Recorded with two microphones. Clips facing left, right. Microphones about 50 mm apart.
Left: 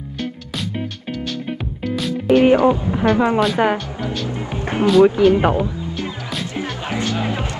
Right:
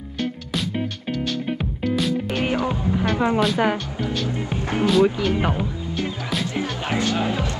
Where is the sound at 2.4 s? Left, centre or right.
Left.